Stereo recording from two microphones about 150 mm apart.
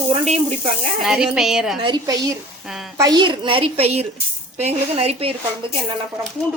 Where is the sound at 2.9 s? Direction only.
25° right (ahead or behind); by 5.3 s 40° right (ahead or behind).